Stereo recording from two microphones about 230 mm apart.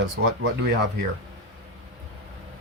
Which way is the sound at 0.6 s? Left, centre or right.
Right.